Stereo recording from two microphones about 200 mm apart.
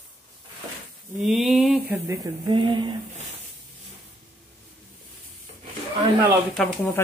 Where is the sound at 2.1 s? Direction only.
20° right (ahead or behind).